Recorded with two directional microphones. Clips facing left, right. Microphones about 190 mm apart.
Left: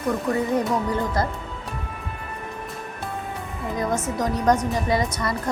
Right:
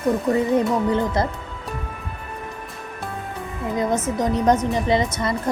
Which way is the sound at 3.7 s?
20° right (ahead or behind).